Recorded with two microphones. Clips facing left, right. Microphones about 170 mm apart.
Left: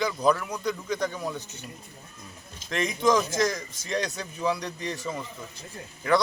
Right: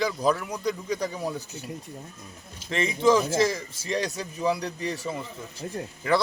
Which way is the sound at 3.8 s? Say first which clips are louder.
Right 1 dB; 35° right (ahead or behind).